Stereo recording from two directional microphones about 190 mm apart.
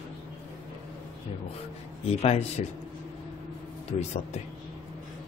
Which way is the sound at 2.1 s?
35° left (ahead or behind).